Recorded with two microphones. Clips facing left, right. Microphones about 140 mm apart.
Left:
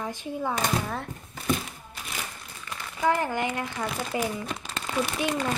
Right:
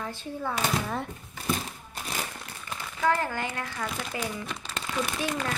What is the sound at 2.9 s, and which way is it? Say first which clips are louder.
Speech: left 2 dB; 15° left (ahead or behind).